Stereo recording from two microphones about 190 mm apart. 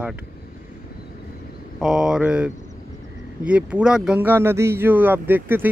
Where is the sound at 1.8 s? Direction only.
Centre (ahead or behind).